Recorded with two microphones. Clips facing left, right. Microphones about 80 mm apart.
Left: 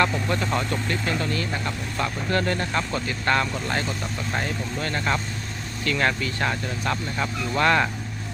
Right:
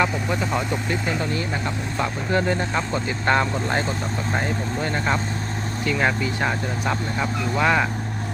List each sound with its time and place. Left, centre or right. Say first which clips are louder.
0.0 s speech: even; centre